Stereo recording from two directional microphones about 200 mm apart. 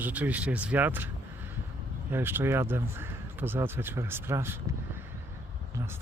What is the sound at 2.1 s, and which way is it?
Speech, 10° right (ahead or behind).